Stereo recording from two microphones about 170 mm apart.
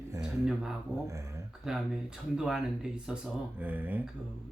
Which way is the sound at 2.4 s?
5° right (ahead or behind).